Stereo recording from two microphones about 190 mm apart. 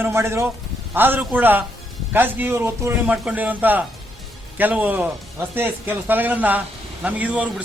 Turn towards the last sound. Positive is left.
turn(degrees=-5)  # may be behind; listen again after turning